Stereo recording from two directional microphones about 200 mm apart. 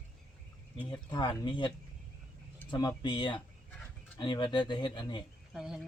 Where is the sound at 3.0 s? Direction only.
25° left (ahead or behind).